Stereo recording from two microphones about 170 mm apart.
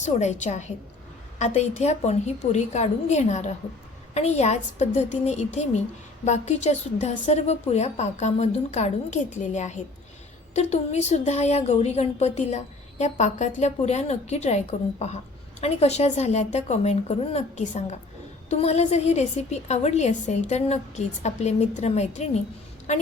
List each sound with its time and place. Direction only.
0.0 s a woman's voice: 45° left (ahead or behind)